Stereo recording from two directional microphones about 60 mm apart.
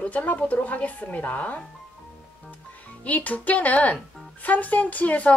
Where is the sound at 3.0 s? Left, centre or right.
Left.